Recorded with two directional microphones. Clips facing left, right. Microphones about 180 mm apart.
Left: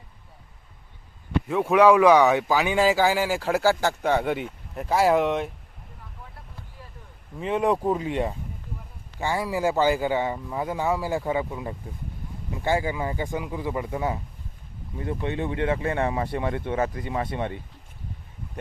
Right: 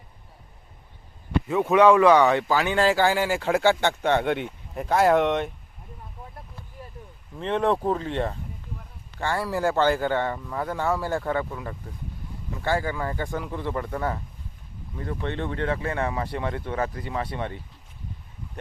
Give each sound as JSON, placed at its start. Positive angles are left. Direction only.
{"t": 1.6, "sound": "speech", "side_deg": 10}
{"t": 7.3, "sound": "speech", "side_deg": 5}